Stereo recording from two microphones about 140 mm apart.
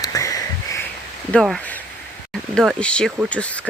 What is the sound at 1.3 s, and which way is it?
Speech, centre (ahead or behind).